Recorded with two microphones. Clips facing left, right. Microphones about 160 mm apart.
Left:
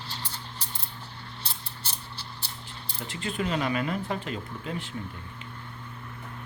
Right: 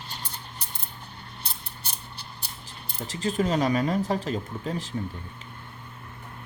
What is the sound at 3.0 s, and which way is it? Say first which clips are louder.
Speech: right 5 dB; 40° right (ahead or behind).